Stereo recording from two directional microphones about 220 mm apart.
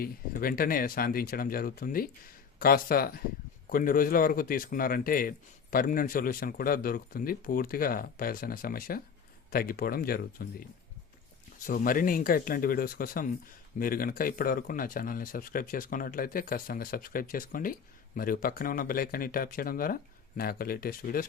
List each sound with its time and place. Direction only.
0.0 s speech: 40° left (ahead or behind)